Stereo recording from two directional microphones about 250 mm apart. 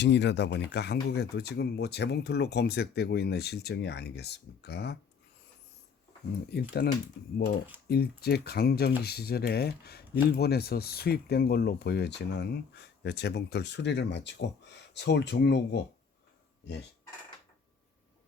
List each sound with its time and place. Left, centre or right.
0.0 s speech: left
6.5 s speech: left